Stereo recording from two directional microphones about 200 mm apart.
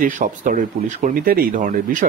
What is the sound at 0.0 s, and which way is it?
Speech, 40° right (ahead or behind).